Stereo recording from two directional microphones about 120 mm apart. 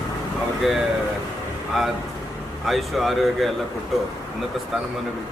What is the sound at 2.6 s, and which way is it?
Speech, centre (ahead or behind).